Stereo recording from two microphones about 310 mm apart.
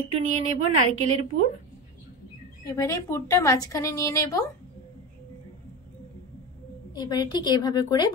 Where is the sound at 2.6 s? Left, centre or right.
Centre.